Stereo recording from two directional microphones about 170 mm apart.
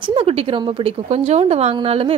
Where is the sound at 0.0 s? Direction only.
35° right (ahead or behind).